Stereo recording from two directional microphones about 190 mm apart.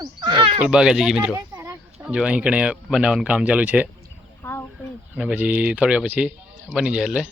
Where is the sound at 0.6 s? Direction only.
5° right (ahead or behind).